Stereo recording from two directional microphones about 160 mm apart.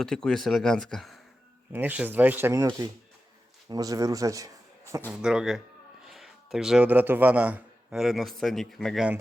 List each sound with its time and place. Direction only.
0.0 s speech: 5° left (ahead or behind)
1.7 s a man's voice: 10° right (ahead or behind)
5.1 s speech: 5° right (ahead or behind)